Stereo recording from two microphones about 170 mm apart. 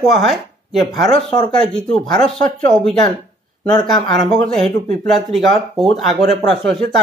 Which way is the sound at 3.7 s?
25° left (ahead or behind).